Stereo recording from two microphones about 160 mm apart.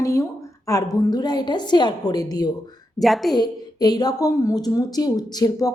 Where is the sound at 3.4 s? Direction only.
25° left (ahead or behind).